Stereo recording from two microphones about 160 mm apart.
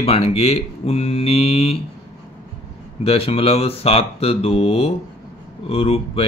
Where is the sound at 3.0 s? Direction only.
35° left (ahead or behind).